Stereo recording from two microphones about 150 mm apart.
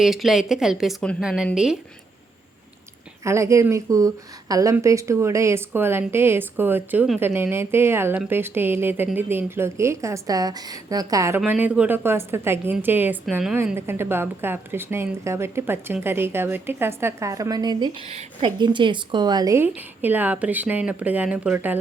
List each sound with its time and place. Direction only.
0.0 s speech: centre (ahead or behind)
3.2 s a woman's voice: 20° right (ahead or behind)
11.3 s a woman's voice: 10° right (ahead or behind)
19.6 s a woman's voice: 10° right (ahead or behind)